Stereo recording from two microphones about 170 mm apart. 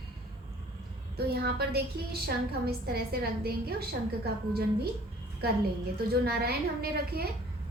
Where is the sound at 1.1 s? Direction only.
70° right (ahead or behind).